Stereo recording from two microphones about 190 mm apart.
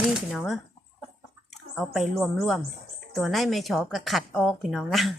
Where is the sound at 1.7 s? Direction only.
Centre (ahead or behind).